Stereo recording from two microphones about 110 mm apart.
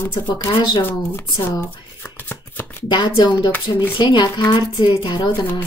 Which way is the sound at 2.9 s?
40° left (ahead or behind).